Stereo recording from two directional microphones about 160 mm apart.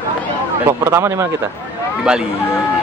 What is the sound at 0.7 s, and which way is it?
Speech, 15° right (ahead or behind).